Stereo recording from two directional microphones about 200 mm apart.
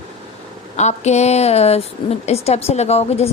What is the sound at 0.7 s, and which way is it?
A woman's voice, 35° left (ahead or behind).